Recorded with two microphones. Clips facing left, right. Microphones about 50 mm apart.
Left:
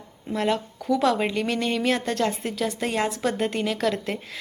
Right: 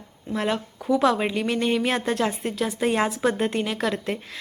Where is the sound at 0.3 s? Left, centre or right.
Centre.